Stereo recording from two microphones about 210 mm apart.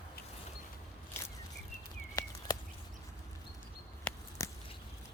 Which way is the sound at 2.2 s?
20° left (ahead or behind).